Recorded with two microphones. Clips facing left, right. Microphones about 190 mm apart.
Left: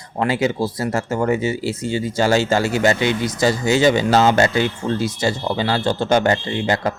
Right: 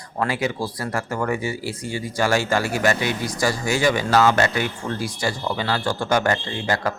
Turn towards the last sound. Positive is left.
turn(degrees=20)  # may be behind; listen again after turning